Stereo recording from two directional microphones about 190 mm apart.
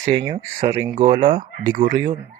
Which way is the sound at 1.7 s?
50° right (ahead or behind).